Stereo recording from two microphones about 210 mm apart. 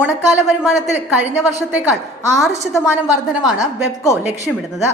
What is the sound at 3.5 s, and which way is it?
Speech, 15° left (ahead or behind).